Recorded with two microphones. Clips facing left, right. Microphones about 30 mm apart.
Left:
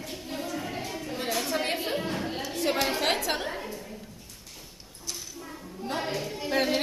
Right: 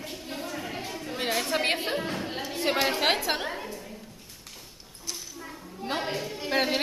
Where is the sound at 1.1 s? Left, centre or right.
Right.